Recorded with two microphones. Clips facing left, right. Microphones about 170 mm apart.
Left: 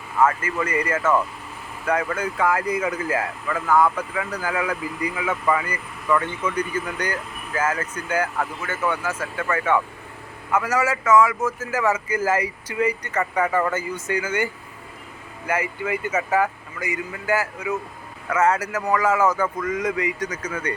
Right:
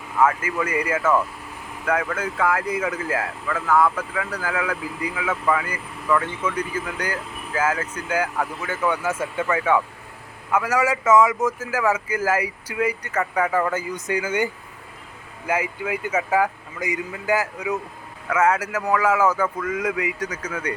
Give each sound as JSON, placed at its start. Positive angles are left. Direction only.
{"t": 0.2, "sound": "a man's voice", "side_deg": -10}
{"t": 8.9, "sound": "speech", "side_deg": -20}
{"t": 9.6, "sound": "a man's voice", "side_deg": -10}
{"t": 13.7, "sound": "a man's voice", "side_deg": -15}